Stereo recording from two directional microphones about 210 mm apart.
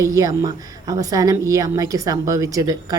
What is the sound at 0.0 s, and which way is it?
A woman's voice, 15° right (ahead or behind).